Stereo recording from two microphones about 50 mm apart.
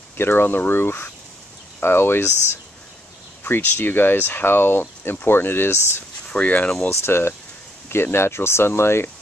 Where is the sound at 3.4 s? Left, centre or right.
Left.